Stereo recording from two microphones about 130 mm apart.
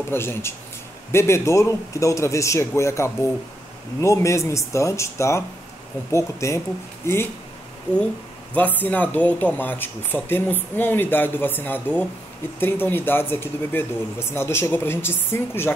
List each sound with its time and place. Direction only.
0.1 s a man's voice: 20° left (ahead or behind)
8.5 s speech: 15° left (ahead or behind)